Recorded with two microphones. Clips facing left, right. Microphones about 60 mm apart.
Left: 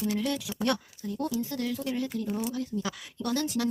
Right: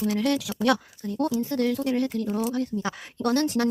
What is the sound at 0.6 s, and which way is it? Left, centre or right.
Speech, right.